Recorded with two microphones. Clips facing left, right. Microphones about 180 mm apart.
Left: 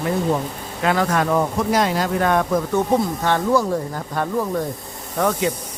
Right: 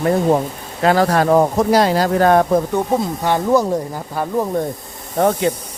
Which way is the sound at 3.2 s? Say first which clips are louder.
Right 6 dB; 15° right (ahead or behind).